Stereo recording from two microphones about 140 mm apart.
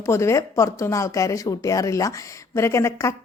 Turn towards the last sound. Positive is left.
turn(degrees=20)  # may be behind; listen again after turning